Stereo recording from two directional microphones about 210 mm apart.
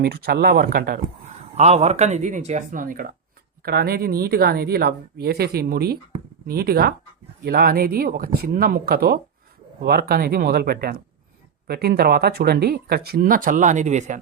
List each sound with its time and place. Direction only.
0.0 s speech: 50° right (ahead or behind)
1.5 s speech: 30° right (ahead or behind)